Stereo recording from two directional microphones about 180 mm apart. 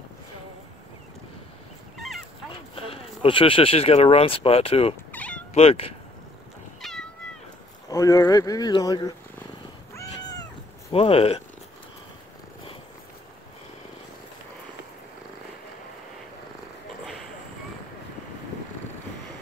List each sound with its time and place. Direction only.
2.7 s speech: 30° left (ahead or behind)
5.1 s cat: 10° left (ahead or behind)
5.5 s speech: 35° left (ahead or behind)
6.8 s cat: centre (ahead or behind)
7.9 s speech: 15° left (ahead or behind)
9.9 s cat: 20° left (ahead or behind)
10.9 s speech: 30° left (ahead or behind)